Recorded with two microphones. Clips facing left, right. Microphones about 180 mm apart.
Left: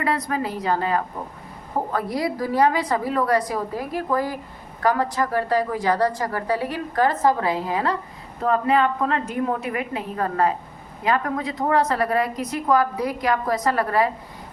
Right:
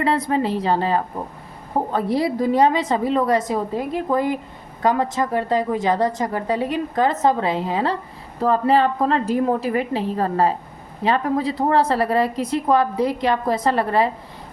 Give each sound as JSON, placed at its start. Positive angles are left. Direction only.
{"t": 0.0, "sound": "a woman's voice", "side_deg": -25}